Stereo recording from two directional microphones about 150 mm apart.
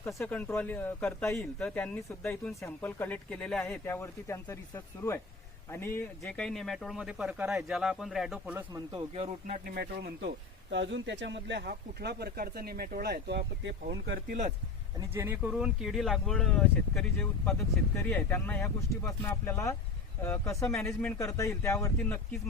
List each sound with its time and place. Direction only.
0.0 s speech: 15° left (ahead or behind)
3.8 s a man's voice: 20° left (ahead or behind); by 8.5 s centre (ahead or behind)
8.9 s speech: 45° right (ahead or behind)
9.6 s speech: 90° right
11.6 s speech: 90° right
14.3 s speech: 55° right (ahead or behind)
14.9 s a man's voice: 15° right (ahead or behind); by 22.2 s 20° left (ahead or behind)